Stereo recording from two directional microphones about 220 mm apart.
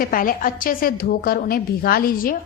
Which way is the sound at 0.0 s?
40° left (ahead or behind).